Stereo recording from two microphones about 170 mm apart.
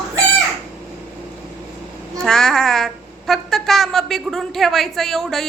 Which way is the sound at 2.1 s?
5° left (ahead or behind).